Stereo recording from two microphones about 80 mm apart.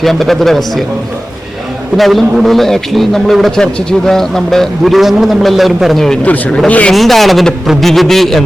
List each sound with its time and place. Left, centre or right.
0.0 s a man's voice: centre
2.0 s a man's voice: centre
6.2 s speech: centre
6.9 s a man's voice: centre